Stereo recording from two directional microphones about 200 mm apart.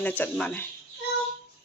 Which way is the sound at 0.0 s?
10° left (ahead or behind).